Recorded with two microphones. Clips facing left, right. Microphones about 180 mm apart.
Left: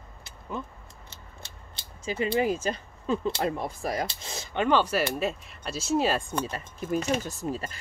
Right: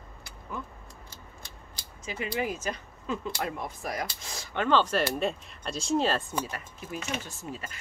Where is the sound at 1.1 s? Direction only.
25° left (ahead or behind); by 6.2 s 10° left (ahead or behind).